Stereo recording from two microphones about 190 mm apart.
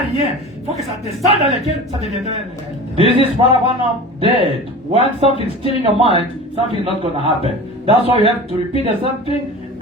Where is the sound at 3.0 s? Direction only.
30° right (ahead or behind).